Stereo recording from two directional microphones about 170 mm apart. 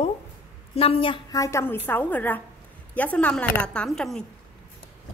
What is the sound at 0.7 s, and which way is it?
Speech, 35° left (ahead or behind).